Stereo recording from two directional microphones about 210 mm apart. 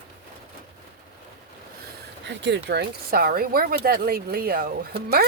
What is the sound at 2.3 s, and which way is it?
Speech, 55° right (ahead or behind).